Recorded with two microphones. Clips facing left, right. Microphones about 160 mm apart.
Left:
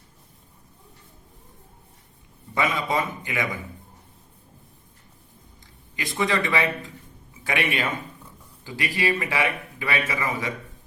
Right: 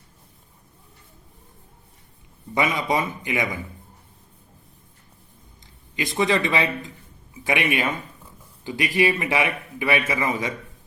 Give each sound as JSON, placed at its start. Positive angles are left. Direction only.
{"t": 2.6, "sound": "a man's voice", "side_deg": -20}
{"t": 6.0, "sound": "a man's voice", "side_deg": -20}